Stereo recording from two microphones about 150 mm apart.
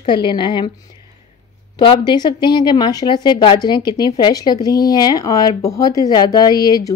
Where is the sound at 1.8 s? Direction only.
30° left (ahead or behind).